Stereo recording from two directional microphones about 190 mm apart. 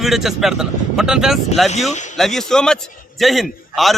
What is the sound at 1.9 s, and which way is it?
Speech, 40° left (ahead or behind).